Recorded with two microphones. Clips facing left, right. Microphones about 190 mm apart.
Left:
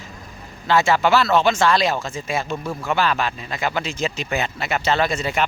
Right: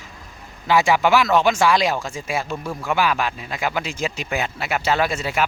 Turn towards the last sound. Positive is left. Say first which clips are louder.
# even
turn(degrees=-5)  # may be behind; listen again after turning